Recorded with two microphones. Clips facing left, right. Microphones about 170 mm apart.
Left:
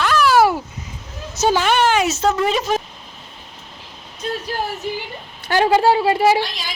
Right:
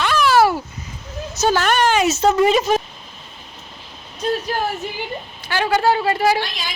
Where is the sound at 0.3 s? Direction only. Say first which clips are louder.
Even; 15° left (ahead or behind).